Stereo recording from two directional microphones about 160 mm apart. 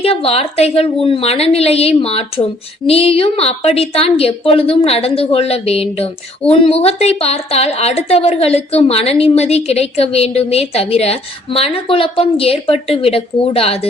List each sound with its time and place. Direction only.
0.0 s a woman's voice: 35° left (ahead or behind)